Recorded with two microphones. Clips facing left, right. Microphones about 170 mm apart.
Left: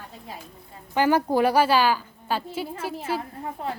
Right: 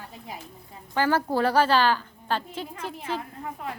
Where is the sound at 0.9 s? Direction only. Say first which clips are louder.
Left 3 dB; 15° left (ahead or behind).